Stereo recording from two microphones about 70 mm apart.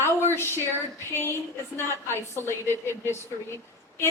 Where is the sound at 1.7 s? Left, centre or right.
Left.